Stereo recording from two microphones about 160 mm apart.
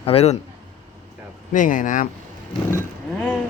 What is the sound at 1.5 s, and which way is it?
Speech, 55° left (ahead or behind).